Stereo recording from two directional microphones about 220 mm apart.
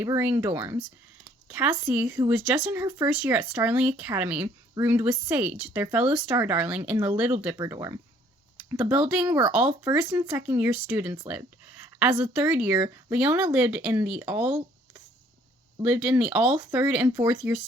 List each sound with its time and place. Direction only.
0.0 s speech: 10° right (ahead or behind)
15.8 s speech: 5° right (ahead or behind)